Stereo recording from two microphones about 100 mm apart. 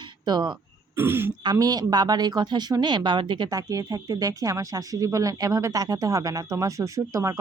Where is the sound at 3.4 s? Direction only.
35° right (ahead or behind).